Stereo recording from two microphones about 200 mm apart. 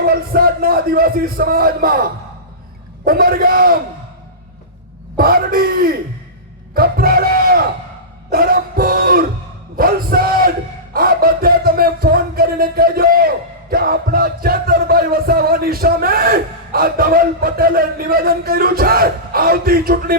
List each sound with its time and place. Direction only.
0.0 s a man's voice: 50° right (ahead or behind)
5.1 s speech: 50° right (ahead or behind)
8.3 s a sound: 50° right (ahead or behind)
9.7 s crowd: 45° right (ahead or behind)
10.9 s speech: 45° right (ahead or behind)